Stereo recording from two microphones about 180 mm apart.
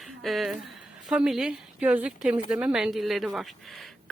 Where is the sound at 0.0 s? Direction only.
Centre (ahead or behind).